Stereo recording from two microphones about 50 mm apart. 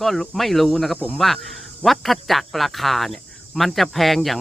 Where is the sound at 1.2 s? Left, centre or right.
Centre.